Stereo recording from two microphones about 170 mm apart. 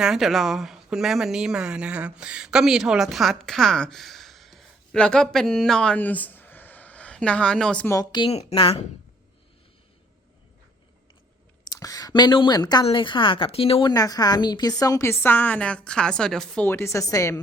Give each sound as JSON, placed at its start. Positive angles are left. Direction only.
{"t": 0.0, "sound": "speech", "side_deg": 0}
{"t": 7.9, "sound": "speech", "side_deg": 25}
{"t": 11.6, "sound": "speech", "side_deg": 20}
{"t": 13.9, "sound": "a woman's voice", "side_deg": 20}
{"t": 16.6, "sound": "a woman's voice", "side_deg": 15}